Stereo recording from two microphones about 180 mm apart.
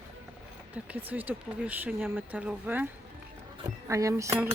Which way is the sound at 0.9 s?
10° right (ahead or behind).